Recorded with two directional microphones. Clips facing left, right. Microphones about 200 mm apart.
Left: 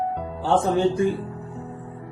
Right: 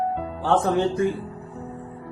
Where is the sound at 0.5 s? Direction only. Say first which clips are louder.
Left 1 dB; 30° left (ahead or behind).